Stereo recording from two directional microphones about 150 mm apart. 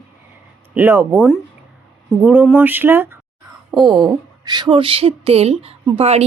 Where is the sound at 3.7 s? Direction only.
30° right (ahead or behind).